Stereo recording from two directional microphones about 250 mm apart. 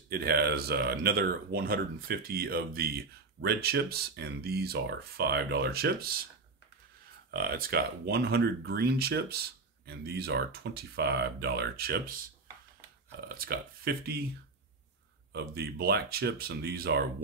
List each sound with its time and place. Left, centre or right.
0.1 s speech: right
7.2 s speech: right
13.2 s speech: right
15.3 s speech: right